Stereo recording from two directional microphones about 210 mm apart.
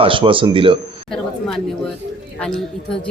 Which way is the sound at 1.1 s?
Centre (ahead or behind).